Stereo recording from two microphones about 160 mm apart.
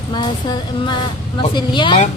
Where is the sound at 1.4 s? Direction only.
30° left (ahead or behind).